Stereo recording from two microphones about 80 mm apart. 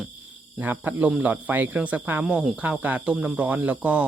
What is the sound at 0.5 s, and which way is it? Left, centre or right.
Speech, right.